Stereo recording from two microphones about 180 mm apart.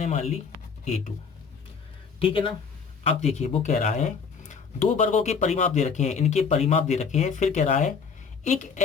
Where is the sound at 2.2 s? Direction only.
30° left (ahead or behind).